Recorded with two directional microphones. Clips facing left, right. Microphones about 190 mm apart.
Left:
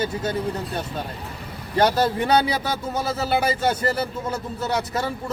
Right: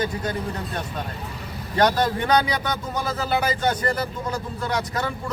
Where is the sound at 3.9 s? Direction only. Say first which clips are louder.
Left 1 dB; 25° left (ahead or behind).